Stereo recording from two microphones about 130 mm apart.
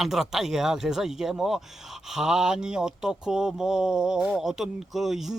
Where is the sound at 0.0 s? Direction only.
Centre (ahead or behind).